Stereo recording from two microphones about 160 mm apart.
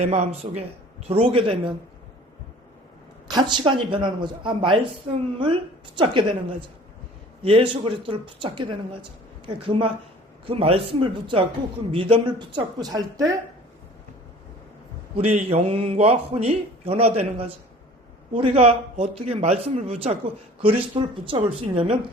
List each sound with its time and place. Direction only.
0.0 s a man's voice: 45° right (ahead or behind)
3.2 s a man's voice: 25° right (ahead or behind)
6.0 s a man's voice: 30° right (ahead or behind)
15.1 s a man's voice: 40° right (ahead or behind)